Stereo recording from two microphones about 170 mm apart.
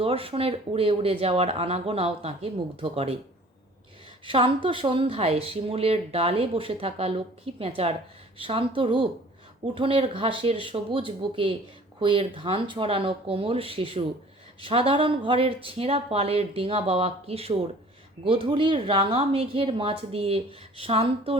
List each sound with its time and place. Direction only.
0.0 s speech: 30° right (ahead or behind)
4.3 s speech: 30° right (ahead or behind)